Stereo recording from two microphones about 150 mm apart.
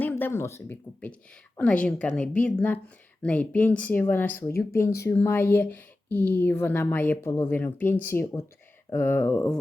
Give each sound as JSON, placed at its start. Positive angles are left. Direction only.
{"t": 0.0, "sound": "speech", "side_deg": 15}